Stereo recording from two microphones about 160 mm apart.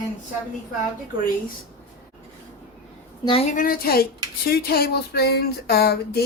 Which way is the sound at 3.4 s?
55° left (ahead or behind).